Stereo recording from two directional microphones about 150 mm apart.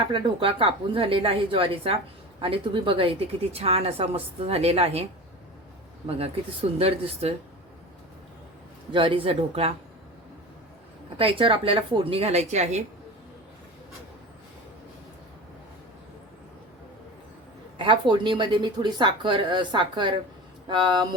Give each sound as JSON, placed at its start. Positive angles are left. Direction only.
{"t": 0.1, "sound": "a woman's voice", "side_deg": -35}
{"t": 6.1, "sound": "a woman's voice", "side_deg": -40}
{"t": 8.9, "sound": "a woman's voice", "side_deg": -35}
{"t": 11.2, "sound": "a woman's voice", "side_deg": -35}
{"t": 18.1, "sound": "a woman's voice", "side_deg": -30}